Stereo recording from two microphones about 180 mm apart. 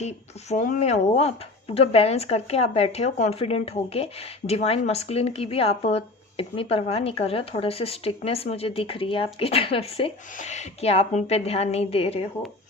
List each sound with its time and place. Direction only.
0.5 s speech: 45° left (ahead or behind)